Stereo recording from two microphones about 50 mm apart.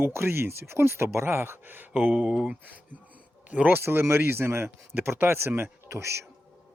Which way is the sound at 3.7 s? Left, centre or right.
Right.